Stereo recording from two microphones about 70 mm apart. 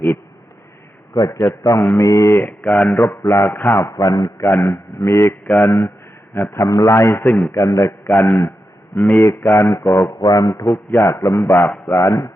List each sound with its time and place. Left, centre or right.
1.1 s a man's voice: left
1.4 s speech: left
2.4 s a man's voice: left
2.9 s a man's voice: left
3.8 s speech: left
4.4 s a man's voice: left
5.5 s a man's voice: left
6.7 s a man's voice: left
7.3 s a man's voice: left
7.5 s speech: left
8.1 s a man's voice: left
9.2 s speech: left
10.2 s a sound: left
10.7 s a man's voice: left